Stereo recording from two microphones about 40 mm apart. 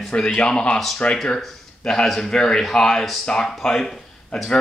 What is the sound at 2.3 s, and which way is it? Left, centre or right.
Speech, centre.